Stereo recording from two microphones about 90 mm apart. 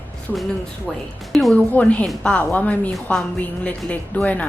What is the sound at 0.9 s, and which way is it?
Speech, centre (ahead or behind).